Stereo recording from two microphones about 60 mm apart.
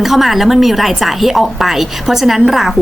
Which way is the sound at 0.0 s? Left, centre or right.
Centre.